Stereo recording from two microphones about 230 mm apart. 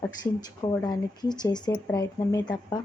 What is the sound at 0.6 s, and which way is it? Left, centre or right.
Speech, centre.